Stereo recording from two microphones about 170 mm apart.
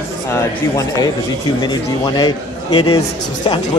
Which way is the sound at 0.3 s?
20° left (ahead or behind).